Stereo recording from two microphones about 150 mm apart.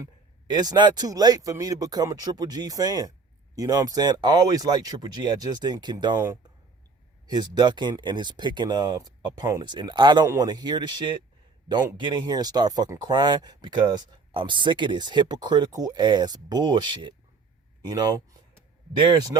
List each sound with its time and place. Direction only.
0.5 s speech: 25° right (ahead or behind)